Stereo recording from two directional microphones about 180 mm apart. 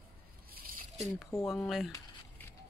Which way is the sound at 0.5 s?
55° right (ahead or behind).